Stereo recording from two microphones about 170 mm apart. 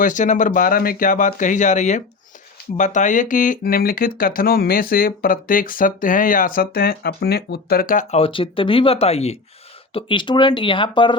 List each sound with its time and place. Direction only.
0.0 s speech: 50° left (ahead or behind)
8.1 s speech: 30° left (ahead or behind)